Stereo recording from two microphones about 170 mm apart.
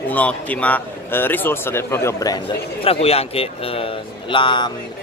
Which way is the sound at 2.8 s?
35° left (ahead or behind).